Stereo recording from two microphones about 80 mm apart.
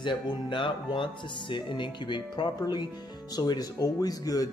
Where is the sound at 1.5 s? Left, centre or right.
Left.